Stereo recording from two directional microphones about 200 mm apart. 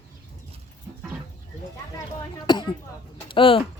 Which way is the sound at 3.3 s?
25° left (ahead or behind).